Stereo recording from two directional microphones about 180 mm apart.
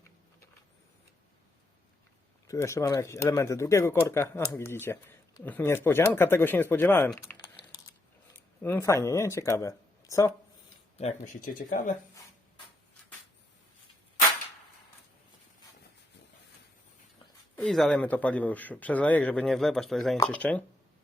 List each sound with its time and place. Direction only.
2.5 s speech: 15° left (ahead or behind)
7.3 s typing: 25° left (ahead or behind)
8.6 s speech: 15° left (ahead or behind)
10.9 s speech: 35° left (ahead or behind)
11.4 s speech: 50° left (ahead or behind)
17.6 s speech: 5° left (ahead or behind)